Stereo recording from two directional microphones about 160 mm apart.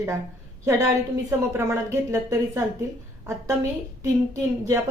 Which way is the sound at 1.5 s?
15° right (ahead or behind).